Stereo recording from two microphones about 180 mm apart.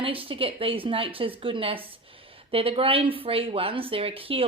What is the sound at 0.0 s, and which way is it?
A woman's voice, 30° right (ahead or behind).